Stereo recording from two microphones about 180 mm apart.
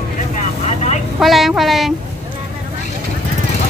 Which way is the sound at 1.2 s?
Centre (ahead or behind).